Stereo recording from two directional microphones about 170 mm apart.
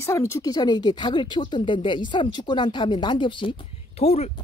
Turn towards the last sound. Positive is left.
turn(degrees=40)  # may be behind; listen again after turning